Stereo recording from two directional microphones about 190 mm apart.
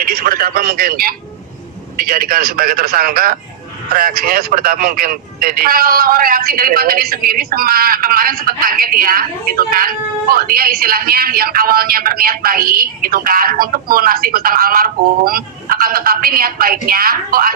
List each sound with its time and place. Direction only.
0.0 s speech: 50° right (ahead or behind)